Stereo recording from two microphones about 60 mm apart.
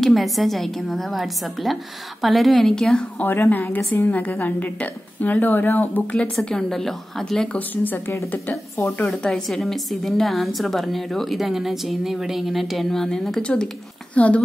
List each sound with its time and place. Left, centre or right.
0.0 s a woman's voice: centre
3.3 s a woman's voice: left
6.4 s a woman's voice: centre
7.5 s a woman's voice: left
9.5 s a woman's voice: centre
13.4 s a woman's voice: centre